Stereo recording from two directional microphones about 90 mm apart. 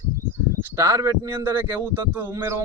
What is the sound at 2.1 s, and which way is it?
Speech, 25° right (ahead or behind).